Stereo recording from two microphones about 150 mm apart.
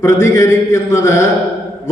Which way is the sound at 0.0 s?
20° left (ahead or behind).